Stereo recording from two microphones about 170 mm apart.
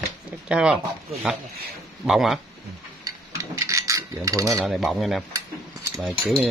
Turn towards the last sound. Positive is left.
turn(degrees=0)  # may be behind; listen again after turning